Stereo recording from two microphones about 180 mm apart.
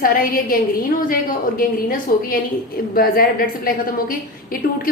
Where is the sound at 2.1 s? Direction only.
55° left (ahead or behind).